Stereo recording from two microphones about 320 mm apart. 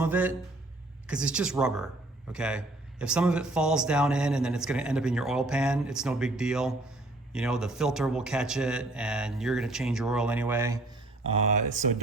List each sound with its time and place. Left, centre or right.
0.0 s a man's voice: centre
11.3 s speech: centre